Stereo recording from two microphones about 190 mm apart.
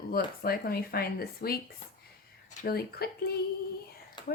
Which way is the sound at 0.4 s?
55° left (ahead or behind).